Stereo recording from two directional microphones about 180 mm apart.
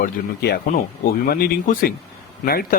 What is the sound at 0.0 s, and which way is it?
Speech, 60° left (ahead or behind).